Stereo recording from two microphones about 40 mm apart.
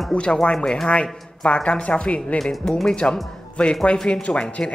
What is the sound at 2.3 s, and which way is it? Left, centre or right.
Speech, centre.